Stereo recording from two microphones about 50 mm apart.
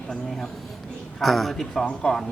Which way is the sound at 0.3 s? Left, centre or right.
Centre.